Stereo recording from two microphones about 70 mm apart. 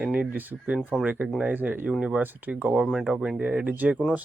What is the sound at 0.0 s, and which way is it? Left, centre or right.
Speech, centre.